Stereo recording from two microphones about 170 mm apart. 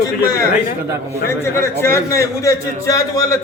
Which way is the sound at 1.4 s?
15° left (ahead or behind).